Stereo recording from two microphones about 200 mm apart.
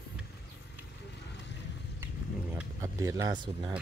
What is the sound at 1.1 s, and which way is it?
Vehicle, 60° left (ahead or behind).